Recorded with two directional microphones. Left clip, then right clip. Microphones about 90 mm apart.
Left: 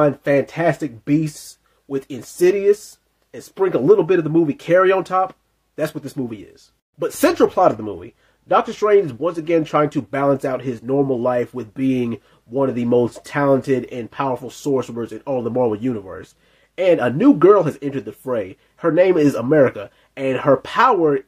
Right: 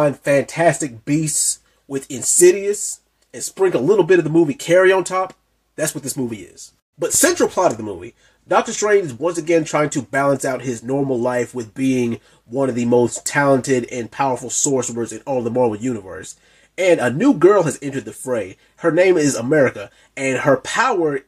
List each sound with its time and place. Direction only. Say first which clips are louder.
0.0 s speech: even; 35° left (ahead or behind)
2.4 s speech: right 1 dB; 25° left (ahead or behind)
7.0 s speech: even; 30° left (ahead or behind)
11.2 s speech: left 1 dB; 30° left (ahead or behind)